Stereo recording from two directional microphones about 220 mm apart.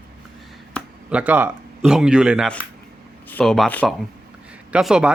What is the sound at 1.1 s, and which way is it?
A man's voice, 5° right (ahead or behind).